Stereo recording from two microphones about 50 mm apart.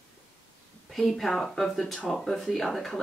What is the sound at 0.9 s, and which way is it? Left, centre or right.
Speech, centre.